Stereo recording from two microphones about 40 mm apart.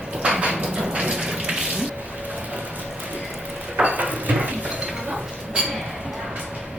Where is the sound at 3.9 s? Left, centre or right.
Right.